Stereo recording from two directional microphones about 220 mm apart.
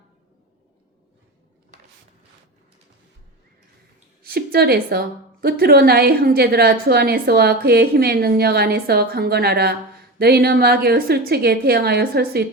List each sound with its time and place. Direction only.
4.2 s a woman's voice: 45° right (ahead or behind)